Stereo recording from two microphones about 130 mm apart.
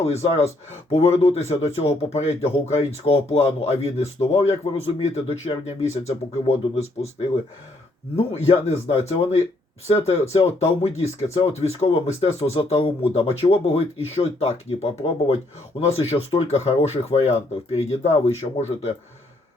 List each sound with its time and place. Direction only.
0.0 s speech: 50° left (ahead or behind)
6.6 s speech: 40° left (ahead or behind)
8.3 s speech: 55° left (ahead or behind)